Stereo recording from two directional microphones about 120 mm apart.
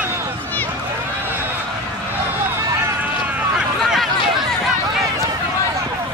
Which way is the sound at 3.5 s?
5° right (ahead or behind).